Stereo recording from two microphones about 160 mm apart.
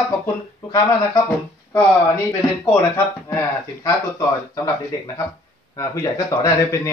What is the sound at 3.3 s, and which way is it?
Speech, 15° left (ahead or behind).